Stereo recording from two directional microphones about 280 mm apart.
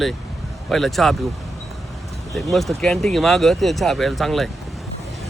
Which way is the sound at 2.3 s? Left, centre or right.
Centre.